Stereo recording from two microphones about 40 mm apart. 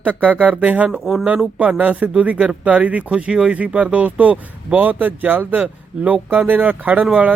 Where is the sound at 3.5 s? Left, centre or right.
Right.